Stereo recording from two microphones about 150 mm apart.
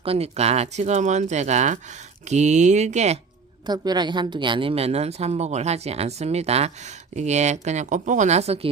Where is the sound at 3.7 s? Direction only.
30° right (ahead or behind).